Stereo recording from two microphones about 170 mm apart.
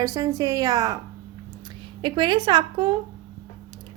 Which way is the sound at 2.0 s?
25° right (ahead or behind).